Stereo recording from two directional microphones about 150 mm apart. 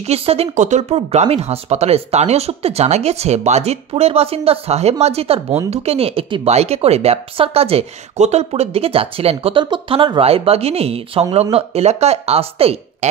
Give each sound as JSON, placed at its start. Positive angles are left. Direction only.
{"t": 0.0, "sound": "speech", "side_deg": -45}